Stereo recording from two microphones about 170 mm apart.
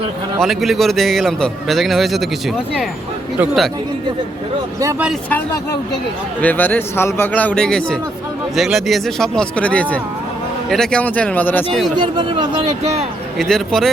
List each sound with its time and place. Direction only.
0.3 s a man's voice: centre (ahead or behind)
3.3 s a man's voice: 5° right (ahead or behind)
4.8 s speech: 15° right (ahead or behind)
6.4 s a man's voice: 10° left (ahead or behind)
11.9 s speech: 25° right (ahead or behind)
12.8 s speech: 40° right (ahead or behind)
13.4 s a man's voice: centre (ahead or behind)